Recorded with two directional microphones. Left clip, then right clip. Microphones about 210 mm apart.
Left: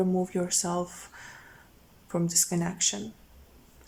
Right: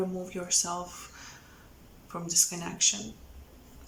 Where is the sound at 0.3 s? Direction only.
35° left (ahead or behind).